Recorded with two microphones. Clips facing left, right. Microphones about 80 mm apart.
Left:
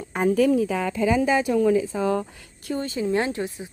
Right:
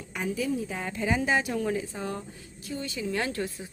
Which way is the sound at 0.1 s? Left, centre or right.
Left.